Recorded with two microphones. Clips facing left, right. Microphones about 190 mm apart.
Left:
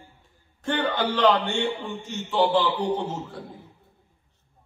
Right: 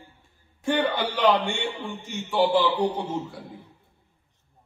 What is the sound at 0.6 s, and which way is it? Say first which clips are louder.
A man's voice: right 1 dB; 10° right (ahead or behind).